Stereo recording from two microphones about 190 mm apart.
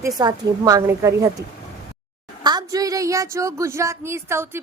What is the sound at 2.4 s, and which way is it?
A woman's voice, 20° right (ahead or behind).